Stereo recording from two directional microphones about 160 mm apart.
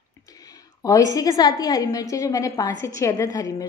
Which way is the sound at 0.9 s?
20° left (ahead or behind).